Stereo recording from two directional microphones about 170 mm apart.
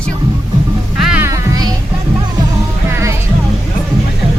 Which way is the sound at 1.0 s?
5° right (ahead or behind).